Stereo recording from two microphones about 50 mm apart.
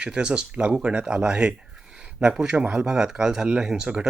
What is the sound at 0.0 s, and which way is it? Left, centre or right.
Speech, centre.